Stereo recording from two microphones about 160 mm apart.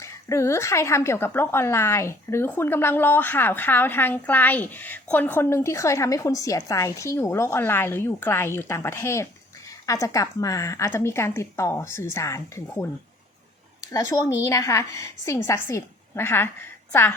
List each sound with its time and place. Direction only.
0.0 s a woman's voice: 15° left (ahead or behind)
13.9 s a woman's voice: 20° left (ahead or behind)